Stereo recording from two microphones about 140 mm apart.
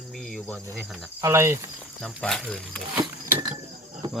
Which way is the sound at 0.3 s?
10° left (ahead or behind).